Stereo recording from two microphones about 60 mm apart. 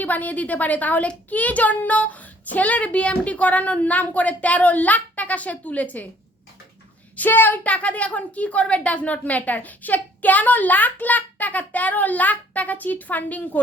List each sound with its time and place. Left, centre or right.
0.0 s a woman's voice: left
7.2 s a woman's voice: left